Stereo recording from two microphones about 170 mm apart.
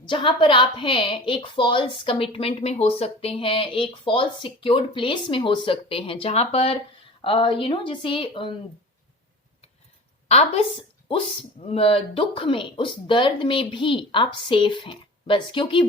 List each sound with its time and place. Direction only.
0.1 s speech: 30° left (ahead or behind)
10.2 s a woman's voice: 40° left (ahead or behind)